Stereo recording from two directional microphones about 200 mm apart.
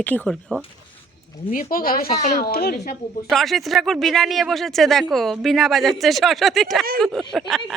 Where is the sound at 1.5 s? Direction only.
45° left (ahead or behind).